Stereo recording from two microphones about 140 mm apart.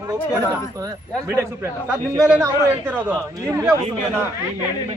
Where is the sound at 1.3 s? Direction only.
15° right (ahead or behind).